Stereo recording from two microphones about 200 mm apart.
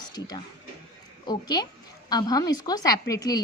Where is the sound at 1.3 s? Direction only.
20° left (ahead or behind).